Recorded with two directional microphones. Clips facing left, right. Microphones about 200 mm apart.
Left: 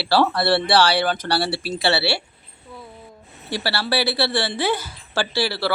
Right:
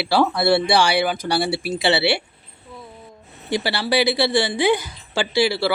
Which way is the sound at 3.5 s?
15° right (ahead or behind).